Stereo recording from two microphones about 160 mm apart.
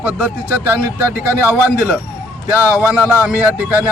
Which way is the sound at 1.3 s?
10° right (ahead or behind).